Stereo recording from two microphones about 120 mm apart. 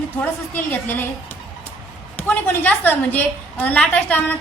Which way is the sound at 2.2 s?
15° left (ahead or behind).